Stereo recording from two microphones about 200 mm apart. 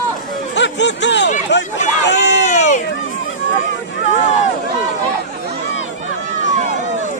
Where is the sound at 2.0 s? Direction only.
60° left (ahead or behind).